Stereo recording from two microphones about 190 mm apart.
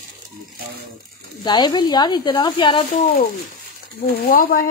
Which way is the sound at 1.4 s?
25° left (ahead or behind).